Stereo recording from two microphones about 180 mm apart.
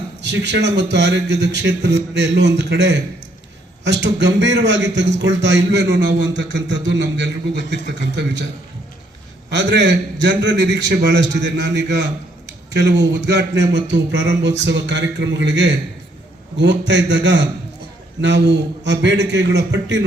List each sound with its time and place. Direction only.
0.2 s a man's voice: 75° right (ahead or behind)
4.0 s a man's voice: 75° right (ahead or behind)
9.5 s a man's voice: 75° right (ahead or behind)